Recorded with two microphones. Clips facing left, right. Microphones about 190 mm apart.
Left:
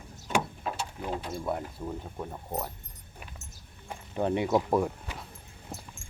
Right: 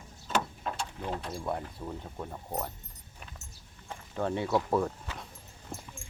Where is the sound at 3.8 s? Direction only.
15° left (ahead or behind).